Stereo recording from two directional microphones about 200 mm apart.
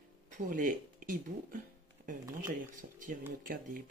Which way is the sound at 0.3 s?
40° right (ahead or behind).